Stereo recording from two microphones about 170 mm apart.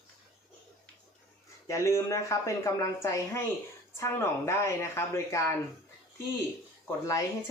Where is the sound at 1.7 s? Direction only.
20° left (ahead or behind).